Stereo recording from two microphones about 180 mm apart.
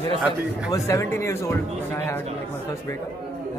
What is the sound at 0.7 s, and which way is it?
Speech, 15° left (ahead or behind).